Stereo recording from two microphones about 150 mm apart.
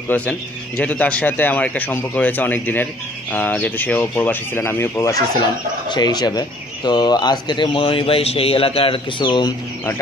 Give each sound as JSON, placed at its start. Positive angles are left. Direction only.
{"t": 0.1, "sound": "a man's voice", "side_deg": 10}
{"t": 5.9, "sound": "speech", "side_deg": 30}